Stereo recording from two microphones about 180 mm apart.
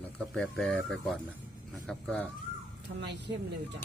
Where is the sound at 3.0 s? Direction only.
75° right (ahead or behind).